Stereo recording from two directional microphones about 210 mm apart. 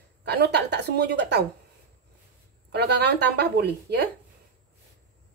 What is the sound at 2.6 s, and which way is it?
Speech, 55° right (ahead or behind).